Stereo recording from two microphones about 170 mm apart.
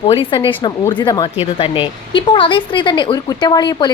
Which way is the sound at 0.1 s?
30° left (ahead or behind).